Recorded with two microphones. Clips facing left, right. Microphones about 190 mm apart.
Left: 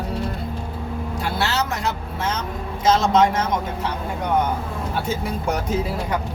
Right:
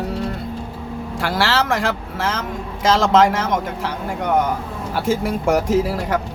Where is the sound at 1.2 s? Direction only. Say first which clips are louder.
Right 5 dB; 90° right.